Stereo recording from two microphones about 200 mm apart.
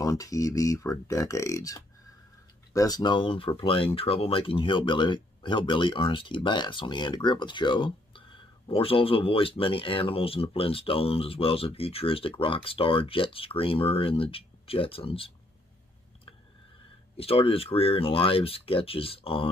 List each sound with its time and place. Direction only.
0.0 s speech: 15° left (ahead or behind)
17.2 s speech: 30° left (ahead or behind)